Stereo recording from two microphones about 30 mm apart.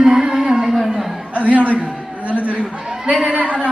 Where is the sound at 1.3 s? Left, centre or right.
Right.